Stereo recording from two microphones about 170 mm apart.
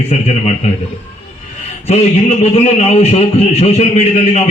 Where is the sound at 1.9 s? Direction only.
40° left (ahead or behind).